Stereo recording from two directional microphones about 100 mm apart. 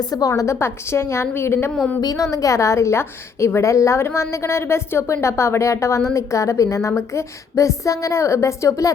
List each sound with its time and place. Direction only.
0.0 s a woman's voice: 40° left (ahead or behind)
2.0 s a woman's voice: 35° left (ahead or behind)